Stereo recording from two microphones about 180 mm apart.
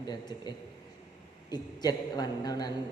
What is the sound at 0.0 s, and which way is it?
A man's voice, 25° left (ahead or behind).